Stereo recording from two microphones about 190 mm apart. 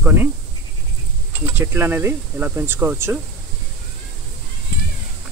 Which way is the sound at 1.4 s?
10° right (ahead or behind).